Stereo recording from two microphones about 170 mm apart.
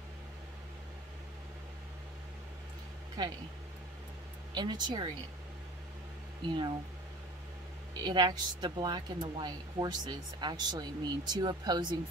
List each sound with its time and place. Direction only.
3.2 s speech: 25° right (ahead or behind)
4.6 s speech: 25° right (ahead or behind)
8.0 s speech: 25° right (ahead or behind)